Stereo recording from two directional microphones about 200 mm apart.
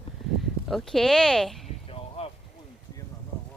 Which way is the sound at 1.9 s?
30° left (ahead or behind).